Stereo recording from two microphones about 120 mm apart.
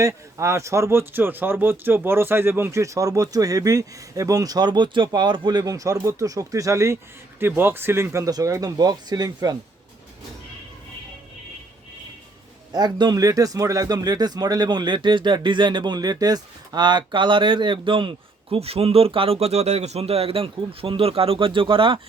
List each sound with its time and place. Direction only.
0.0 s speech: 25° right (ahead or behind)
12.7 s speech: 35° right (ahead or behind)